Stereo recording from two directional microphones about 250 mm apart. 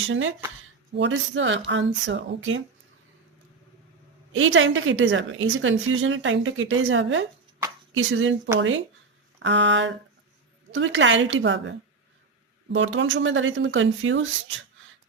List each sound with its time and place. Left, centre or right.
0.1 s a woman's voice: right
4.3 s a woman's voice: right